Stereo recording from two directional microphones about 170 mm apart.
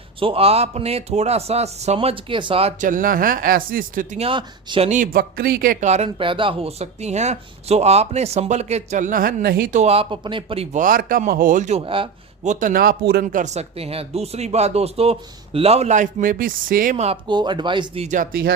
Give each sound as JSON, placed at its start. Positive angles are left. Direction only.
{"t": 0.2, "sound": "speech", "side_deg": -35}
{"t": 2.8, "sound": "speech", "side_deg": -50}
{"t": 4.2, "sound": "speech", "side_deg": -30}
{"t": 4.9, "sound": "speech", "side_deg": -55}
{"t": 5.8, "sound": "speech", "side_deg": -40}
{"t": 9.8, "sound": "speech", "side_deg": -35}
{"t": 10.8, "sound": "a man's voice", "side_deg": -55}
{"t": 11.9, "sound": "speech", "side_deg": -30}
{"t": 12.5, "sound": "speech", "side_deg": -50}
{"t": 13.2, "sound": "speech", "side_deg": -45}
{"t": 17.2, "sound": "speech", "side_deg": -25}